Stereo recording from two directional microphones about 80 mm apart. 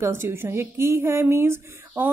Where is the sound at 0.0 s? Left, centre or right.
Right.